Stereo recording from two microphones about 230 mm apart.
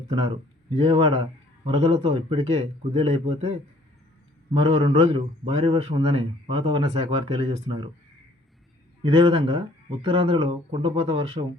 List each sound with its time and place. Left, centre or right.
0.2 s a man's voice: right
9.0 s a man's voice: right